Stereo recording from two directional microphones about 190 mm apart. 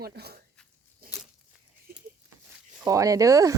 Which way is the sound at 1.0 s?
50° right (ahead or behind).